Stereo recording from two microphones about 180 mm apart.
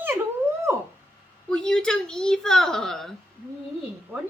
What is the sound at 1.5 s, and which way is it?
A woman's voice, 5° left (ahead or behind).